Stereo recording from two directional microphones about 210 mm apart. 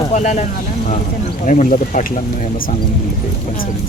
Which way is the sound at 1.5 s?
35° left (ahead or behind).